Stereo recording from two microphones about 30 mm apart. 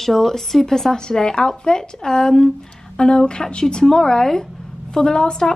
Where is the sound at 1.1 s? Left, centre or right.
Left.